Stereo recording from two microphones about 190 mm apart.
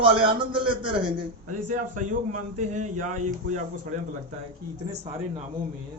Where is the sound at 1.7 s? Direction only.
40° right (ahead or behind).